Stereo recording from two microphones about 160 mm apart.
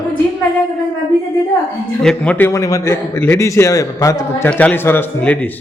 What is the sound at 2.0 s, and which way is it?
A man's voice, 10° left (ahead or behind).